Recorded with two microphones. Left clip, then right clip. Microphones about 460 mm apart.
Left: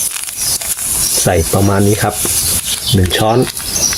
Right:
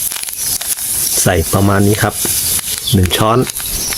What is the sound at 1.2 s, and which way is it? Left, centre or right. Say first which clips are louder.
Speech: even; right.